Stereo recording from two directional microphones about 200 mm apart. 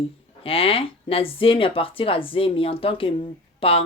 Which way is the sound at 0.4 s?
30° left (ahead or behind).